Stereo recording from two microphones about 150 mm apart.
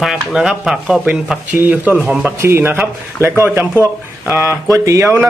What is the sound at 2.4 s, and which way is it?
Speech, 15° right (ahead or behind).